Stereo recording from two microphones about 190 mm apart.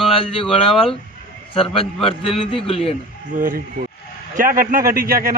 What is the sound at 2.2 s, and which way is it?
Speech, 30° left (ahead or behind).